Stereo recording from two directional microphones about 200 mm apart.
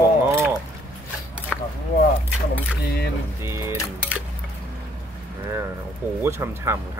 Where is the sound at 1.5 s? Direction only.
5° left (ahead or behind).